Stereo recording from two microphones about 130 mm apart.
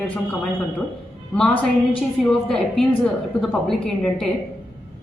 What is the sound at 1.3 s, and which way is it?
A woman's voice, 10° left (ahead or behind).